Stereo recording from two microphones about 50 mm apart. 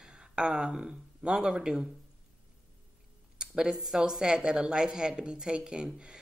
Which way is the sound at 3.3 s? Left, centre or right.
Centre.